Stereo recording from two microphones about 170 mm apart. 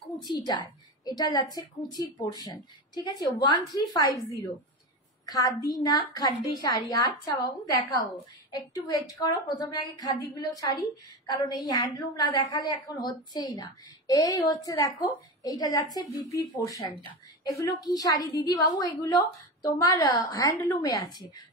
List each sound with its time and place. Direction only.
0.3 s a woman's voice: 25° left (ahead or behind)
5.6 s a woman's voice: 20° left (ahead or behind)